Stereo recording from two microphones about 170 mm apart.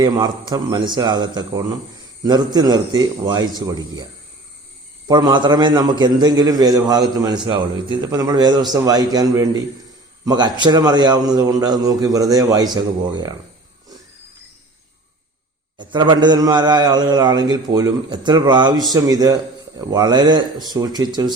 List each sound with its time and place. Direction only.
0.0 s a man's voice: 25° right (ahead or behind)
5.0 s a man's voice: 25° right (ahead or behind)
15.8 s a man's voice: 25° right (ahead or behind)